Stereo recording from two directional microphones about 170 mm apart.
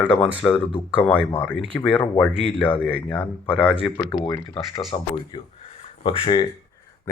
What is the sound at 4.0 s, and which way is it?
Speech, 25° left (ahead or behind).